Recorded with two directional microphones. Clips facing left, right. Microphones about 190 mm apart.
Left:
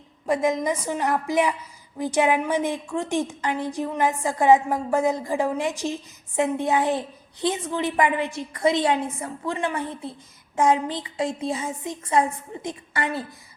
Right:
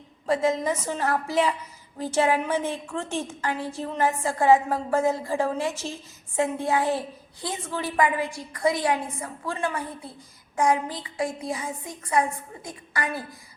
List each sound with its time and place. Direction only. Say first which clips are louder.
0.3 s a woman's voice: left 1 dB; 15° left (ahead or behind)